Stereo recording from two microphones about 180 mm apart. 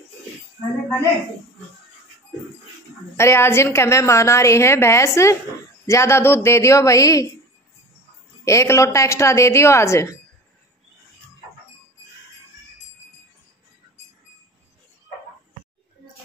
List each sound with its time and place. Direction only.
3.2 s a woman's voice: 15° left (ahead or behind)
8.5 s a woman's voice: 15° left (ahead or behind)